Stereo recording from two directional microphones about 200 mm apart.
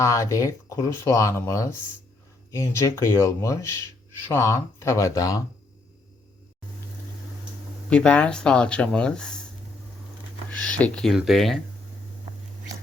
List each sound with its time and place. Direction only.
0.0 s speech: 15° left (ahead or behind)
7.9 s speech: 5° left (ahead or behind)
10.5 s speech: 5° left (ahead or behind)